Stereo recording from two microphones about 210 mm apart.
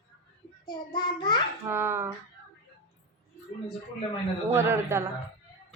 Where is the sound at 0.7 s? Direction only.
20° left (ahead or behind).